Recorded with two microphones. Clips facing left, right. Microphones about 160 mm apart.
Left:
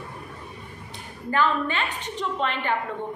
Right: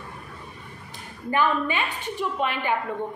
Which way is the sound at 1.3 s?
15° right (ahead or behind).